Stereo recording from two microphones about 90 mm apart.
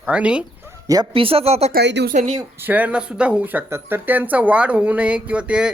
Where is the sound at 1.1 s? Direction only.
90° right.